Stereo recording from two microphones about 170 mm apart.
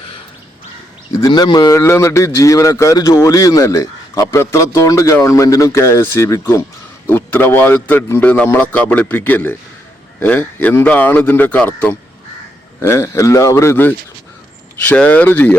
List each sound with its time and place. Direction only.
1.2 s a man's voice: 25° left (ahead or behind); by 15.5 s 10° left (ahead or behind)